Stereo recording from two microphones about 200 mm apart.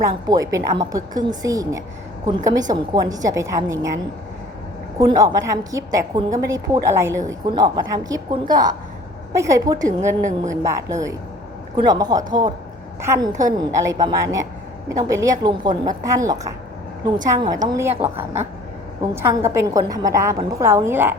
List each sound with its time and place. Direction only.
0.0 s a woman's voice: 15° right (ahead or behind)
4.9 s a woman's voice: 15° right (ahead or behind)